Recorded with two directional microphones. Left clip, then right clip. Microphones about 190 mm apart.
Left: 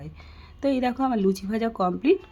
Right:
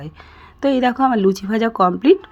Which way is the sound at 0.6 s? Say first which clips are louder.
Right 8 dB; 10° right (ahead or behind).